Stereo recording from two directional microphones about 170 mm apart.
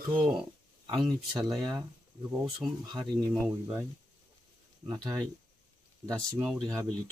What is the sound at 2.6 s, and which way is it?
Speech, 25° right (ahead or behind).